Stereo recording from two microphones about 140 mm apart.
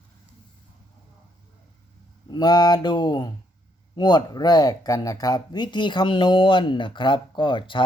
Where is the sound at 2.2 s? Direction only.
30° left (ahead or behind).